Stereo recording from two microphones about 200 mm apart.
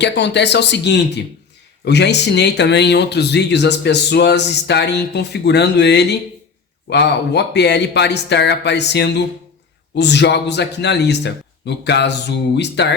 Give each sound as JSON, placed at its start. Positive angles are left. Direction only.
{"t": 0.0, "sound": "speech", "side_deg": 60}